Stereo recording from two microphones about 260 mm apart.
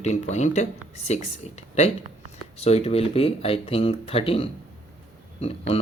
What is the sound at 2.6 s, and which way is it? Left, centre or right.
Speech, left.